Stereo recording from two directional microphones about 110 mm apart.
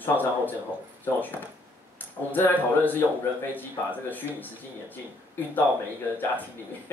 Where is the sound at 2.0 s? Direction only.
15° left (ahead or behind).